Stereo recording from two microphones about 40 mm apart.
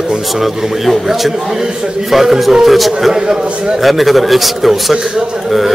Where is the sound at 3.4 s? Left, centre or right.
Right.